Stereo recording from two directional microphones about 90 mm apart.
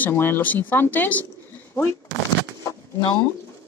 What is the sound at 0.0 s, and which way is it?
Speech, 25° left (ahead or behind).